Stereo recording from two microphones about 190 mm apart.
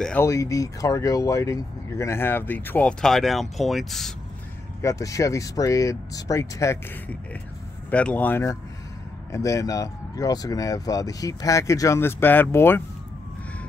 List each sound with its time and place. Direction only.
0.0 s speech: 10° left (ahead or behind)
4.8 s speech: 15° left (ahead or behind)